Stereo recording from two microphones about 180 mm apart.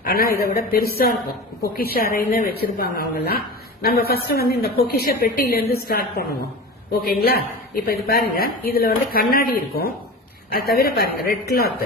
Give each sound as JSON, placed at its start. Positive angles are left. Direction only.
{"t": 0.0, "sound": "a woman's voice", "side_deg": 55}